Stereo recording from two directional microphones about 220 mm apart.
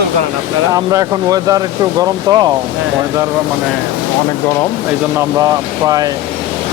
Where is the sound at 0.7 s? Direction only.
15° right (ahead or behind).